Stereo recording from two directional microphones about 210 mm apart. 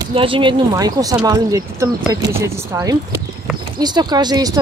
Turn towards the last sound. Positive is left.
turn(degrees=-20)  # may be behind; listen again after turning